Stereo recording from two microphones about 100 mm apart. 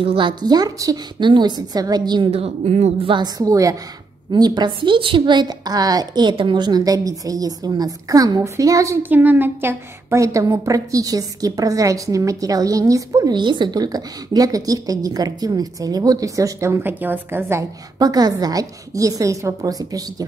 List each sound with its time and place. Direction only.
0.0 s a woman's voice: 60° right (ahead or behind); by 0.9 s 40° right (ahead or behind)
1.2 s a woman's voice: 50° right (ahead or behind)
2.3 s a woman's voice: 90° right
3.2 s a woman's voice: 35° right (ahead or behind)
4.3 s a woman's voice: 45° right (ahead or behind)
9.1 s a woman's voice: 20° right (ahead or behind); by 13.3 s 35° right (ahead or behind)
13.3 s a woman's voice: 50° right (ahead or behind); by 17.6 s 25° right (ahead or behind)
17.9 s a woman's voice: 40° right (ahead or behind)